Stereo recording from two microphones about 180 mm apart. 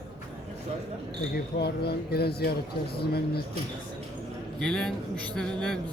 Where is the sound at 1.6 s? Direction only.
65° left (ahead or behind).